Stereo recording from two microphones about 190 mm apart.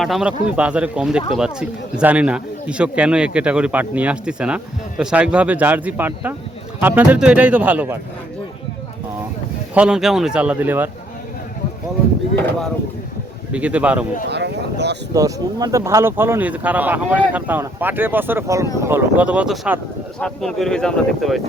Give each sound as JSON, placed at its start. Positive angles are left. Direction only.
{"t": 0.0, "sound": "speech", "side_deg": 0}
{"t": 9.7, "sound": "speech", "side_deg": -5}
{"t": 12.5, "sound": "speech", "side_deg": 5}
{"t": 13.5, "sound": "speech", "side_deg": -5}
{"t": 14.3, "sound": "speech", "side_deg": -60}
{"t": 15.1, "sound": "speech", "side_deg": -20}